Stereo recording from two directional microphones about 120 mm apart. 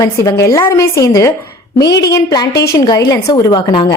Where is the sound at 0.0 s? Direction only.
30° left (ahead or behind).